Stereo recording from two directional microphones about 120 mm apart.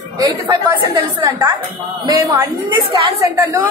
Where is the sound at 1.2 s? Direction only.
20° right (ahead or behind).